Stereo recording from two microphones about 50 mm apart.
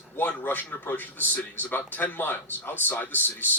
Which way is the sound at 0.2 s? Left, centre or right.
Left.